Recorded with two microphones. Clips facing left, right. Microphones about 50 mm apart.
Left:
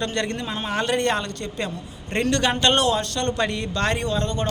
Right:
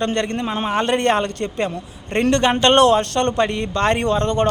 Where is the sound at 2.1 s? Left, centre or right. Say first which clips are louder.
Right 5 dB; right.